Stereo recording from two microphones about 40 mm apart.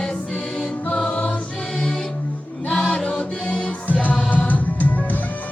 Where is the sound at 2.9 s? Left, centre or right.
Left.